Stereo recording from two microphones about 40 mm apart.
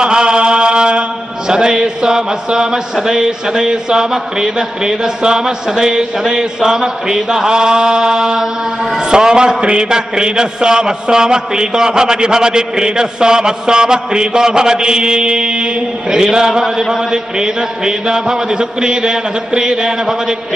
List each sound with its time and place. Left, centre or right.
0.0 s chant: right
1.5 s a sound: centre
8.9 s a man's voice: centre